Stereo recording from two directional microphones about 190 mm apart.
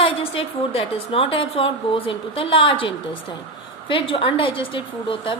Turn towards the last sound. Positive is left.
turn(degrees=25)  # may be behind; listen again after turning